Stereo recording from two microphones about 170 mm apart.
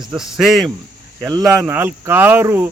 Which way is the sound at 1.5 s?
15° right (ahead or behind).